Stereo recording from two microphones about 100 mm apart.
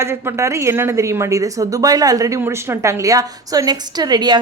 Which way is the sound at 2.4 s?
25° right (ahead or behind).